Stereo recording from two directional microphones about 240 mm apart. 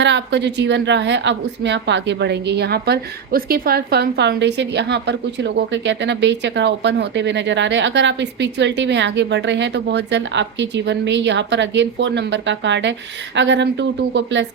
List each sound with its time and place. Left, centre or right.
0.0 s a woman's voice: right